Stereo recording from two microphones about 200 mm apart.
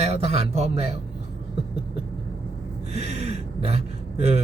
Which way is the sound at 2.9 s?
30° right (ahead or behind).